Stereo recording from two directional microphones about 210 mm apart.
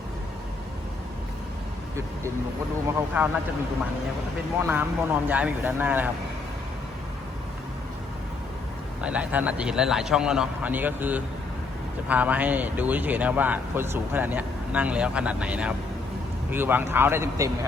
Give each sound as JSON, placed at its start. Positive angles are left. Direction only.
{"t": 3.1, "sound": "speech", "side_deg": -10}
{"t": 4.6, "sound": "speech", "side_deg": -10}
{"t": 9.0, "sound": "a man's voice", "side_deg": -5}